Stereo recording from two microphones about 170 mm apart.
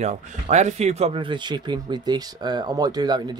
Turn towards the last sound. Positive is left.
turn(degrees=-25)  # may be behind; listen again after turning